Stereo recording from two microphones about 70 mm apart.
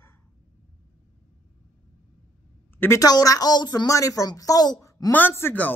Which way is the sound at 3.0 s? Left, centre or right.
Left.